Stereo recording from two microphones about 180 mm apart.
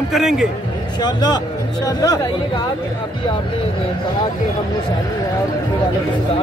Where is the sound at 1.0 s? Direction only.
25° left (ahead or behind).